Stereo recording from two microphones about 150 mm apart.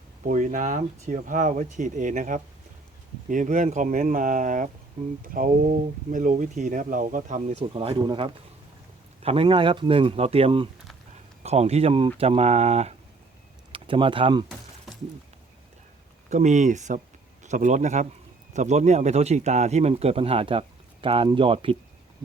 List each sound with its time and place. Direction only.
0.3 s speech: 55° right (ahead or behind)
13.7 s speech: 35° right (ahead or behind)
16.3 s speech: 50° right (ahead or behind); by 21.8 s 35° right (ahead or behind)